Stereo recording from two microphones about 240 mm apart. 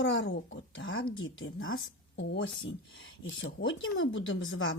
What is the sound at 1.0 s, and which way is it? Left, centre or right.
Speech, centre.